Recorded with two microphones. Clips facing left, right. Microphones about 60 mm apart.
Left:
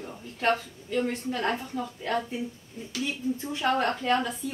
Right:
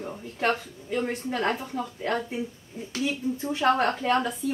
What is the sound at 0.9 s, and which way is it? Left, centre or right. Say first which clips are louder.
Speech: even; right.